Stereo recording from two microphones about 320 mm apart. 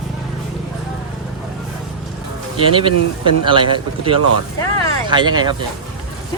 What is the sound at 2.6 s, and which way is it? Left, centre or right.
A man's voice, centre.